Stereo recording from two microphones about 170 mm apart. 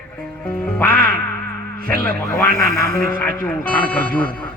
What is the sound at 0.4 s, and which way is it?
Quack, 10° left (ahead or behind).